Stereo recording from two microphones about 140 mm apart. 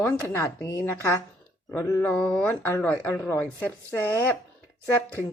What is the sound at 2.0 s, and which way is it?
A woman's voice, 5° left (ahead or behind).